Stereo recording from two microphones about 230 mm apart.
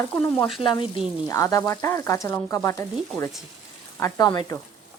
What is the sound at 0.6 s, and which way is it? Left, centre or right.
A woman's voice, left.